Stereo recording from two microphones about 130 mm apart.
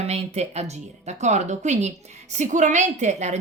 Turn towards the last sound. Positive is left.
turn(degrees=-60)  # may be behind; listen again after turning